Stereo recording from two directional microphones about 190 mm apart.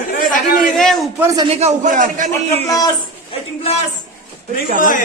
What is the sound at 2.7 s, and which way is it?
Speech, 20° left (ahead or behind).